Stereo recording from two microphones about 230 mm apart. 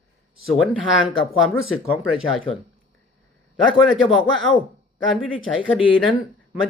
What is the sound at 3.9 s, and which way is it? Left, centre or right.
Speech, centre.